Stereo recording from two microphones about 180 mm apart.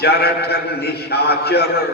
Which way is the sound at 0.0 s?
65° left (ahead or behind).